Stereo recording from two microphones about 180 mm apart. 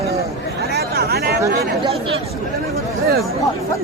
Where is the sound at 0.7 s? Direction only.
60° right (ahead or behind).